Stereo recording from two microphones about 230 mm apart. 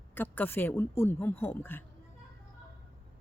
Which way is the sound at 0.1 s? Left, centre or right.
Centre.